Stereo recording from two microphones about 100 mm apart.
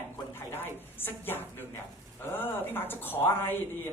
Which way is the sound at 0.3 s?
20° left (ahead or behind).